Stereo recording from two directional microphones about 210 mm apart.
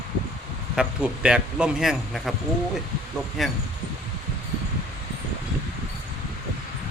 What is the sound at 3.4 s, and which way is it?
Speech, centre (ahead or behind).